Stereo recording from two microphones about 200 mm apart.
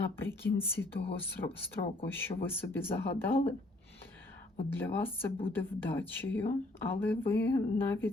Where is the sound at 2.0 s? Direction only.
10° left (ahead or behind).